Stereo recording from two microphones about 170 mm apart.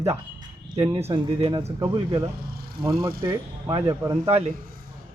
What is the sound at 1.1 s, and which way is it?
Speech, 30° right (ahead or behind).